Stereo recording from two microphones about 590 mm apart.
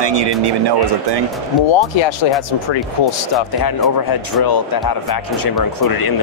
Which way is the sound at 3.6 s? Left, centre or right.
Left.